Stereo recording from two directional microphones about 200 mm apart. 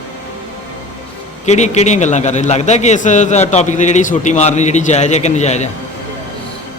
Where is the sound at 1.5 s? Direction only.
35° left (ahead or behind).